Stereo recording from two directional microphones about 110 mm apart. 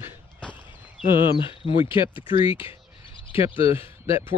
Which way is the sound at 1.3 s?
55° left (ahead or behind).